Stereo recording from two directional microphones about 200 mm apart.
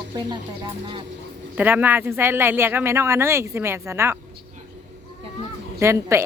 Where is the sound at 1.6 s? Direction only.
10° right (ahead or behind).